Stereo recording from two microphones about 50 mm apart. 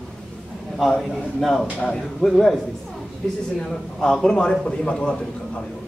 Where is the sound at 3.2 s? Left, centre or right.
Centre.